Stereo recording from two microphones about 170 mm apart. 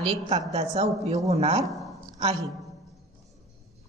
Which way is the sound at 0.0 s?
35° right (ahead or behind).